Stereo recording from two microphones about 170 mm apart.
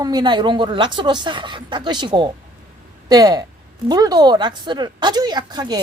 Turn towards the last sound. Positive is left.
turn(degrees=-25)  # may be behind; listen again after turning